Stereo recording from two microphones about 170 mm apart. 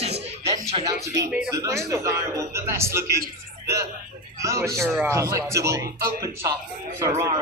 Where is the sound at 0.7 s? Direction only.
30° right (ahead or behind).